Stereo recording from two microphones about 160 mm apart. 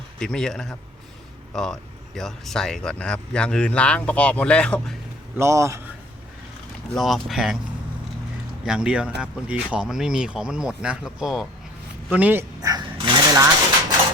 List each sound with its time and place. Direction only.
0.2 s speech: 5° left (ahead or behind)
5.4 s a man's voice: 20° right (ahead or behind)
6.9 s speech: centre (ahead or behind)
8.6 s a man's voice: 5° right (ahead or behind)
12.6 s sewing machine: 25° right (ahead or behind)